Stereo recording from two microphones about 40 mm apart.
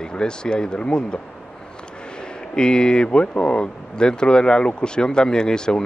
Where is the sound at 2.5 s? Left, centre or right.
Left.